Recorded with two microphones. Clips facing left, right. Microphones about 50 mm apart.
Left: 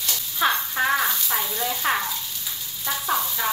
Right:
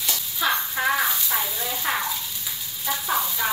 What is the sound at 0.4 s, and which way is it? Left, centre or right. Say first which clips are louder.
Frying: left 2 dB; left.